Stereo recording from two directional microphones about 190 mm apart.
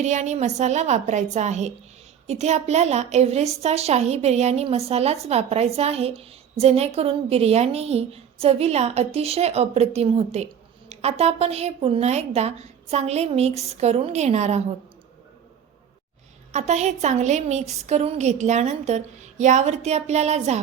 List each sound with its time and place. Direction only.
0.0 s a woman's voice: 40° right (ahead or behind)
16.5 s a woman's voice: 35° right (ahead or behind)